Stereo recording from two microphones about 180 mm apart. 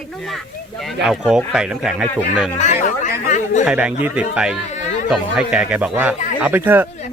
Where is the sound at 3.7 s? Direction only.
5° right (ahead or behind).